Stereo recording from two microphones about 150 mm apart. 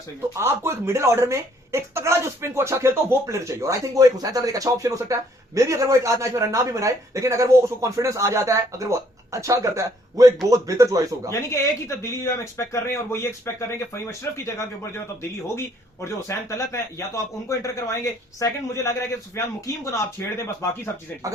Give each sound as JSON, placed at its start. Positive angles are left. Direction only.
{"t": 0.3, "sound": "speech", "side_deg": -20}
{"t": 11.3, "sound": "speech", "side_deg": 15}
{"t": 21.2, "sound": "speech", "side_deg": -20}